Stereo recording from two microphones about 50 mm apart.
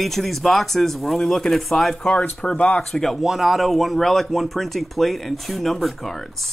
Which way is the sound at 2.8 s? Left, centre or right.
Centre.